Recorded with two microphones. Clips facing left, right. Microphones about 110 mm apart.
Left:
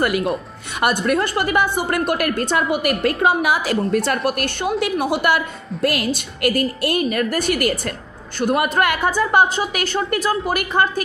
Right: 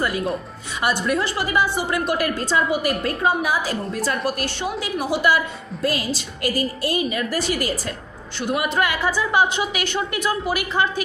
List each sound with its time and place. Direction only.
0.0 s speech: 90° left
0.7 s a woman's voice: 60° left (ahead or behind)
3.0 s a woman's voice: 75° left (ahead or behind)
3.9 s a woman's voice: 65° left (ahead or behind)
8.4 s a woman's voice: 50° left (ahead or behind)